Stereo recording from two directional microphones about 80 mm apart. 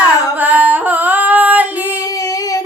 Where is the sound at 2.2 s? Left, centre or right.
Left.